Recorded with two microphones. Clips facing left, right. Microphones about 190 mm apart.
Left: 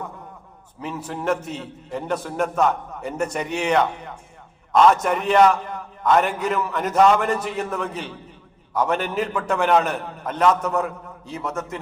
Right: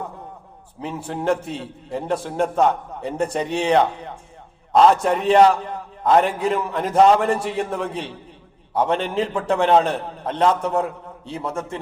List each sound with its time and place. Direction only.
0.8 s a man's voice: 30° right (ahead or behind)